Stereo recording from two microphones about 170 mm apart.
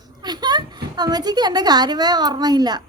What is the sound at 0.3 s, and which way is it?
A woman's voice, 25° right (ahead or behind).